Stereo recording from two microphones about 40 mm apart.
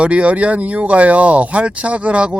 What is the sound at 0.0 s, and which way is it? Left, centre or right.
Speech, right.